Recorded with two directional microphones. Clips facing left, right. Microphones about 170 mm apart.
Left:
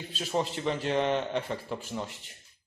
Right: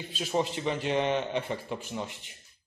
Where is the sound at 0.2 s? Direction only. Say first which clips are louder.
Right 1 dB; centre (ahead or behind).